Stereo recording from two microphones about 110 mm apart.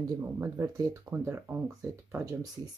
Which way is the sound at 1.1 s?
20° right (ahead or behind).